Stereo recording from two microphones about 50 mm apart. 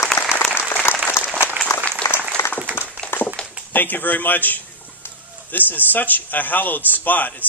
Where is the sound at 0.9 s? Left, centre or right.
Left.